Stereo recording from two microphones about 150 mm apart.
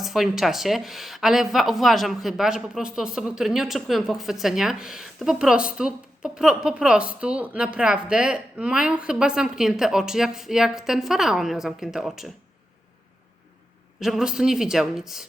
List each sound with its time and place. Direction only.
0.0 s speech: centre (ahead or behind)
14.0 s speech: 5° right (ahead or behind)